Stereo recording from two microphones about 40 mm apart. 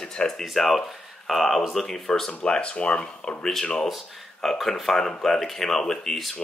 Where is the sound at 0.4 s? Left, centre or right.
Centre.